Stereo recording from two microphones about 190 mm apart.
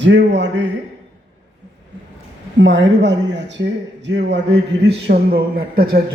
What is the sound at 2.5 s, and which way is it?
A man's voice, 70° right (ahead or behind).